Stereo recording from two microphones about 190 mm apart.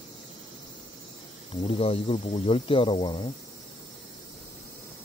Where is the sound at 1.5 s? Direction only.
30° left (ahead or behind).